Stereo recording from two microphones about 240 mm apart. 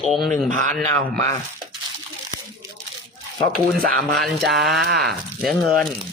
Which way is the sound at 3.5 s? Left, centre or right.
Centre.